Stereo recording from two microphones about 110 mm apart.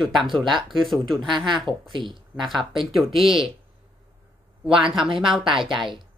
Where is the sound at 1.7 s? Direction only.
45° right (ahead or behind).